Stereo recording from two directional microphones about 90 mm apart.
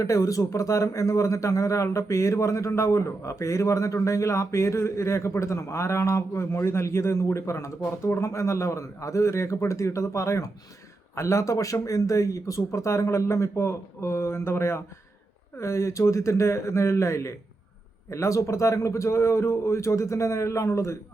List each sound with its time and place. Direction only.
0.0 s speech: 35° left (ahead or behind)